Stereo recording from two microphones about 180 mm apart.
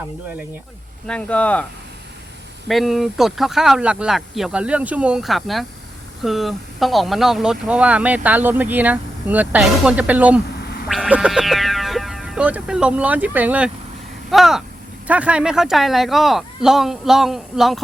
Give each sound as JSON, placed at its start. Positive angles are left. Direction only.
{"t": 1.0, "sound": "speech", "side_deg": 5}
{"t": 2.6, "sound": "speech", "side_deg": 0}
{"t": 10.6, "sound": "quack", "side_deg": 60}
{"t": 10.8, "sound": "speech", "side_deg": 0}